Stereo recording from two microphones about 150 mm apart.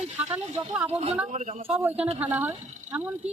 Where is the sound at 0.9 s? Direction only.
45° right (ahead or behind).